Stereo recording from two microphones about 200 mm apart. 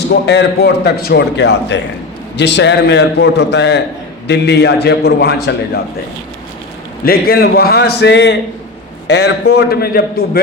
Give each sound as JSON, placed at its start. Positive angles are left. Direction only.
{"t": 0.1, "sound": "a man's voice", "side_deg": 55}
{"t": 7.0, "sound": "a man's voice", "side_deg": 50}